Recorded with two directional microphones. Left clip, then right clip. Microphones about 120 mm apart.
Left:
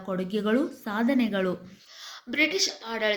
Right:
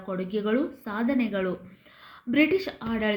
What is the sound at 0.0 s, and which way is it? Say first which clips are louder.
A woman's voice: even; 35° left (ahead or behind).